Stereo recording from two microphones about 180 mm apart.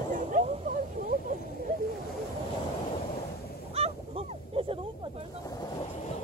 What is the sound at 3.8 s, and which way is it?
Honk, 30° right (ahead or behind).